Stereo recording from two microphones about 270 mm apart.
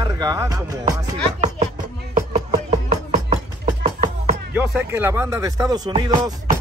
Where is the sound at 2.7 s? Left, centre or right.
Right.